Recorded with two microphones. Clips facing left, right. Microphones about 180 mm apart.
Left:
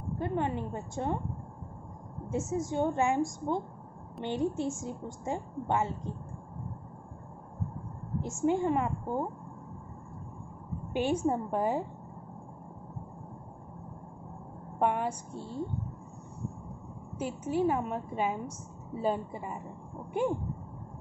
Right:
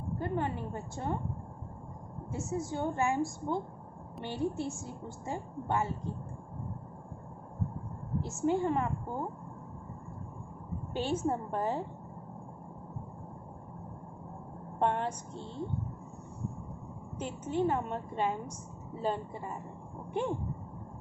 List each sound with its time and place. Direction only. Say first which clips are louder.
0.2 s a woman's voice: left 3 dB; 20° left (ahead or behind)
2.3 s a woman's voice: left 4 dB; 20° left (ahead or behind)
8.2 s a woman's voice: left 2 dB; 15° left (ahead or behind)
10.9 s a woman's voice: left 3 dB; 15° left (ahead or behind)
14.8 s a woman's voice: left 2 dB; 10° left (ahead or behind)
17.2 s a woman's voice: left 2 dB; 10° left (ahead or behind)